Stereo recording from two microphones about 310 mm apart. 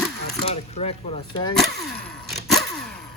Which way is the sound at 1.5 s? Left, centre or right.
Centre.